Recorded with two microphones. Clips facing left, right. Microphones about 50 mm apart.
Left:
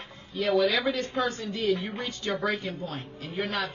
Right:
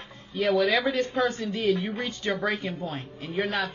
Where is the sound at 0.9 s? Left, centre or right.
Right.